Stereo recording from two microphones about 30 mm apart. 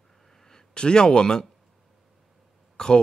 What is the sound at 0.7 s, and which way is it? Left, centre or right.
Speech, left.